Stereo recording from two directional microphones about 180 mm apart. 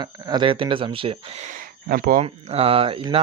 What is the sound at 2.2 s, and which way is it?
Speech, 35° right (ahead or behind).